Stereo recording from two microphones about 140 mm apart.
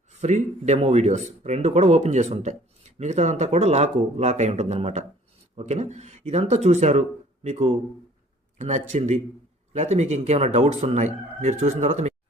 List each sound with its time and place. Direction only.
0.1 s speech: 55° right (ahead or behind)